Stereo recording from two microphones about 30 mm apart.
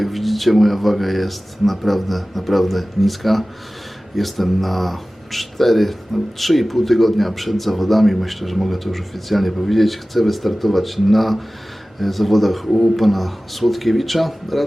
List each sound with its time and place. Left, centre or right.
0.0 s speech: centre